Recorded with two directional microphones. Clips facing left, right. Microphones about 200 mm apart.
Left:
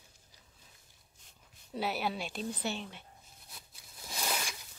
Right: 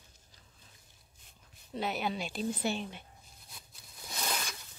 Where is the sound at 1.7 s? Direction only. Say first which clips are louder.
Even; 5° left (ahead or behind).